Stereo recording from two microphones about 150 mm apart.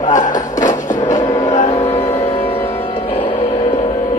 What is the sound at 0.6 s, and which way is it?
Music, 55° left (ahead or behind).